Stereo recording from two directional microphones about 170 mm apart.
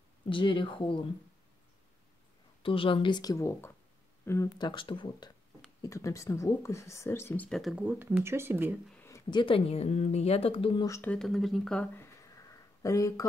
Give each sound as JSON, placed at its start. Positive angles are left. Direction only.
{"t": 0.3, "sound": "speech", "side_deg": 30}
{"t": 2.6, "sound": "speech", "side_deg": 30}
{"t": 7.4, "sound": "speech", "side_deg": 0}
{"t": 8.9, "sound": "a sound", "side_deg": 15}
{"t": 9.3, "sound": "speech", "side_deg": 30}
{"t": 10.9, "sound": "speech", "side_deg": 10}